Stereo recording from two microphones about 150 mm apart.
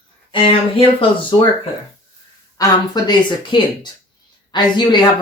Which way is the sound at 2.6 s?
25° left (ahead or behind).